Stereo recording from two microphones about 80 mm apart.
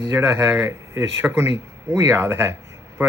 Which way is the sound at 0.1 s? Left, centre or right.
Right.